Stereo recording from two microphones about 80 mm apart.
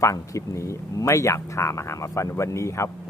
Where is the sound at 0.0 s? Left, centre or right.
Left.